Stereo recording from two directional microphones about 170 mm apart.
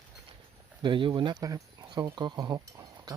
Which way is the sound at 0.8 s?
30° right (ahead or behind).